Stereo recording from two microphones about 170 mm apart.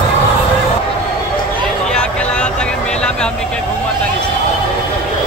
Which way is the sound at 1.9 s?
5° left (ahead or behind).